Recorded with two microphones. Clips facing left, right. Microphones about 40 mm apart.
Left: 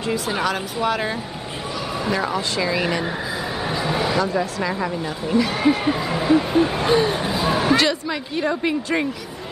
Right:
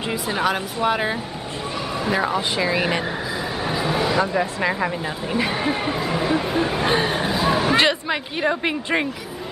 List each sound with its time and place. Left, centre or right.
0.3 s speech: centre
2.1 s speech: centre
3.6 s a sound: centre
4.3 s speech: right; by 6.9 s centre
6.9 s speech: centre
7.2 s a sound: centre
7.7 s speech: right